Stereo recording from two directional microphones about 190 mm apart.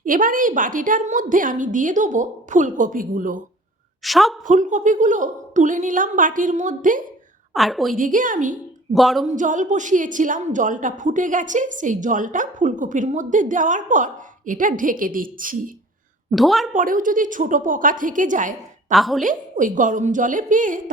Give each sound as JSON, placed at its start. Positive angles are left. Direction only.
{"t": 0.0, "sound": "a woman's voice", "side_deg": -45}
{"t": 4.0, "sound": "a woman's voice", "side_deg": 0}
{"t": 4.4, "sound": "a woman's voice", "side_deg": -40}
{"t": 7.5, "sound": "a woman's voice", "side_deg": 0}
{"t": 7.9, "sound": "a woman's voice", "side_deg": -45}
{"t": 9.0, "sound": "a woman's voice", "side_deg": 0}
{"t": 9.2, "sound": "a woman's voice", "side_deg": -40}
{"t": 16.3, "sound": "a woman's voice", "side_deg": 0}
{"t": 16.7, "sound": "a woman's voice", "side_deg": -45}
{"t": 18.9, "sound": "a woman's voice", "side_deg": 0}
{"t": 19.2, "sound": "a woman's voice", "side_deg": -45}